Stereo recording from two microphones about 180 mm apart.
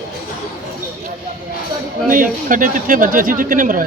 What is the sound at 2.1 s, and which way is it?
Speech, 50° right (ahead or behind).